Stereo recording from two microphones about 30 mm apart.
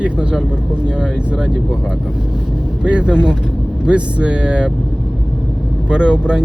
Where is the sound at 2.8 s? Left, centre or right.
Right.